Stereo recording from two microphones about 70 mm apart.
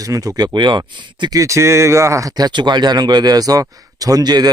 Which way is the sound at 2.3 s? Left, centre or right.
Right.